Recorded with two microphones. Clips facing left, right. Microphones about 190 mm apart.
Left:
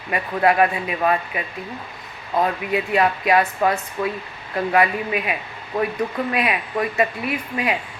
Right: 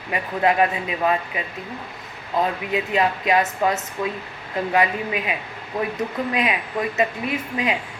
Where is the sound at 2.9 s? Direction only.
20° right (ahead or behind).